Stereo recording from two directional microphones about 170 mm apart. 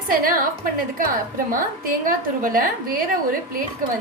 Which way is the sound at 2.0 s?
55° right (ahead or behind).